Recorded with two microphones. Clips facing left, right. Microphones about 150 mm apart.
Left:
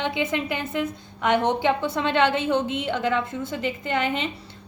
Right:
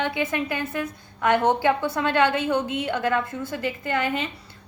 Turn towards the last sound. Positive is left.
turn(degrees=25)  # may be behind; listen again after turning